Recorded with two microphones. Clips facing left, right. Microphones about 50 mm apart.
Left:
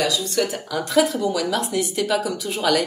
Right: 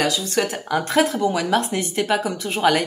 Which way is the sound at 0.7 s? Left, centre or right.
Right.